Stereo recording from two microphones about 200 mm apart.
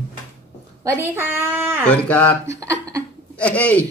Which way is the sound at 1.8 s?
10° left (ahead or behind).